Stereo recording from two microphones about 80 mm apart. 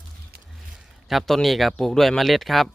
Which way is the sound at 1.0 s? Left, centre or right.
Centre.